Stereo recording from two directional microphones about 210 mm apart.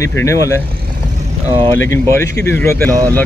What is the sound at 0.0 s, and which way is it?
Speech, 15° left (ahead or behind).